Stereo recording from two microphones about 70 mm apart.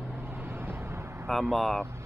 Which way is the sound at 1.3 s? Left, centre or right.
Centre.